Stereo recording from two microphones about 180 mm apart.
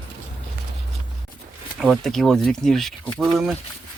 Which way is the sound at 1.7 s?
Centre (ahead or behind).